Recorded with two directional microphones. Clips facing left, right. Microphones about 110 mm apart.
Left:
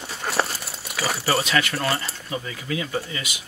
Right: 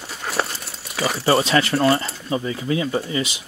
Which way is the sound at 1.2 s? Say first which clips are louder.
Right 6 dB; 30° right (ahead or behind).